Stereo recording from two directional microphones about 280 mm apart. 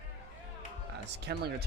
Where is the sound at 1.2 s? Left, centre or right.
Right.